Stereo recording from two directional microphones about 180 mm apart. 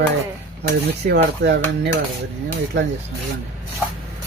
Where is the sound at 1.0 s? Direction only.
65° right (ahead or behind).